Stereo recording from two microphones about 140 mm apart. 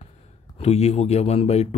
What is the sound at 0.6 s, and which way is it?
Speech, 50° left (ahead or behind).